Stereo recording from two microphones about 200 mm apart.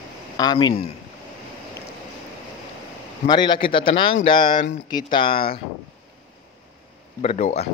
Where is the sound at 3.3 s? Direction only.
20° left (ahead or behind).